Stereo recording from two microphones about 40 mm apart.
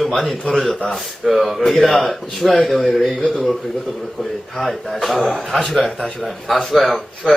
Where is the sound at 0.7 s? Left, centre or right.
Centre.